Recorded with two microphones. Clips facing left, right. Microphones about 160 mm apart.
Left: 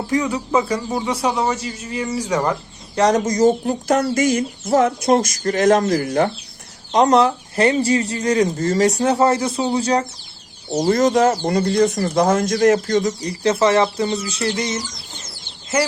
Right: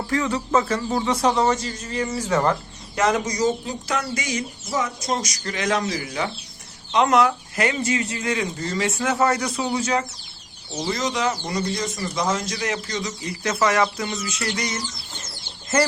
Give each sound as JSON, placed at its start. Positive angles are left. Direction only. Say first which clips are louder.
{"t": 0.1, "sound": "a man's voice", "louder": "left 2 dB", "side_deg": 15}
{"t": 2.9, "sound": "speech", "louder": "left 5 dB", "side_deg": 35}
{"t": 6.9, "sound": "speech", "louder": "left 4 dB", "side_deg": 35}
{"t": 10.8, "sound": "speech", "louder": "left 10 dB", "side_deg": 50}
{"t": 13.4, "sound": "speech", "louder": "left 5 dB", "side_deg": 30}